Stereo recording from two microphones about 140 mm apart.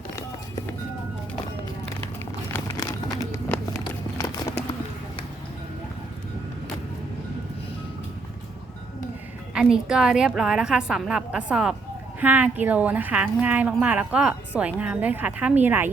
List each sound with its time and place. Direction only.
2.7 s run: 25° left (ahead or behind)
9.6 s a woman's voice: 5° right (ahead or behind)